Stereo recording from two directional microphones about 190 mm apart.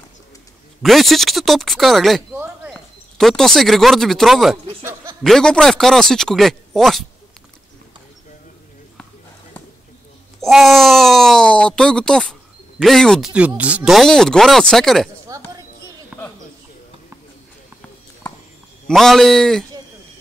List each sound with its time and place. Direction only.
0.8 s speech: centre (ahead or behind)
10.4 s speech: centre (ahead or behind)
15.3 s basketball bounce: 15° right (ahead or behind)
16.1 s a sound: 5° right (ahead or behind)
18.9 s speech: centre (ahead or behind)